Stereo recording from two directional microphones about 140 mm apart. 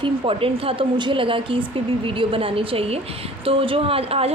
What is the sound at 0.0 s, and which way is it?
A woman's voice, 40° right (ahead or behind).